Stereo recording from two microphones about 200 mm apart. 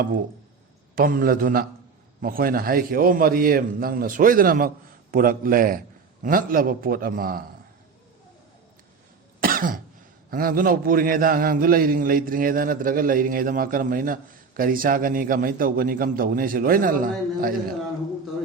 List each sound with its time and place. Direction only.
0.9 s a man's voice: 45° right (ahead or behind)
9.4 s cough: 45° right (ahead or behind)
10.2 s a man's voice: 45° right (ahead or behind)